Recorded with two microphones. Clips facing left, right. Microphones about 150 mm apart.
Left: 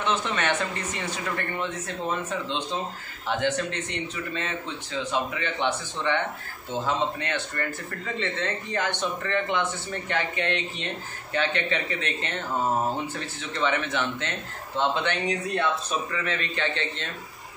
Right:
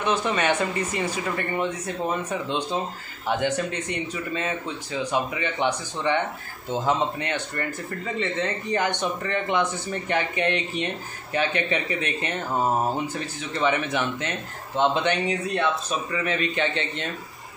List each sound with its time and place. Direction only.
0.0 s a man's voice: 10° right (ahead or behind)
13.6 s a man's voice: 15° right (ahead or behind)